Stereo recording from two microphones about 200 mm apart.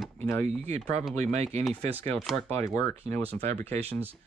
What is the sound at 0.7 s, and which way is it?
Speech, 35° right (ahead or behind).